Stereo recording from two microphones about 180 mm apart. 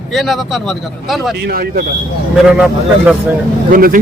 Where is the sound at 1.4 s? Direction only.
55° right (ahead or behind).